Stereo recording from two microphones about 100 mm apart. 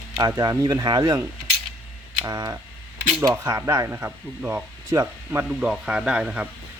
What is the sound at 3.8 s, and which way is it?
Speech, 25° right (ahead or behind).